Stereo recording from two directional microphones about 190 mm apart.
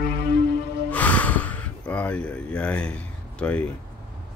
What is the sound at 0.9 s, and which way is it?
Gasp, 10° left (ahead or behind).